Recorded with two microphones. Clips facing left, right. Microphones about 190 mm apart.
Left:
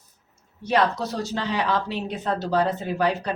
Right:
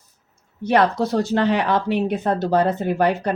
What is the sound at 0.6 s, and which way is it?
A woman's voice, 55° right (ahead or behind).